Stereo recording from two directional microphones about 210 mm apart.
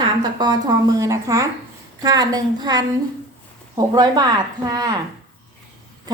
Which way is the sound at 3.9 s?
20° right (ahead or behind).